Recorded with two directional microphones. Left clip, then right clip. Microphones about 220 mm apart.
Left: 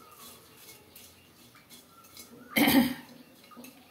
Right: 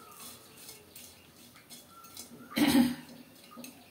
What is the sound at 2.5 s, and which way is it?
Cough, 35° left (ahead or behind).